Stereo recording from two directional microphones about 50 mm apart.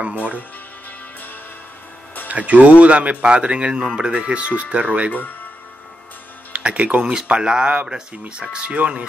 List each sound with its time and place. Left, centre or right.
2.2 s speech: right
6.5 s speech: right